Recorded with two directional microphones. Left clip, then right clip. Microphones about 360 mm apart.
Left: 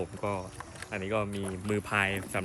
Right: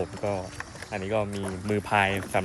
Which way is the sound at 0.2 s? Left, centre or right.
Centre.